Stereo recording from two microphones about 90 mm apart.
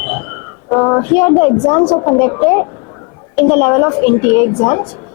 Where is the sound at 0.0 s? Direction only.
20° left (ahead or behind).